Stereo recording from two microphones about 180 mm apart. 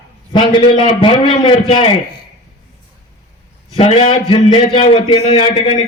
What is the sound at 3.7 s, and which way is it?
A man's voice, 30° left (ahead or behind).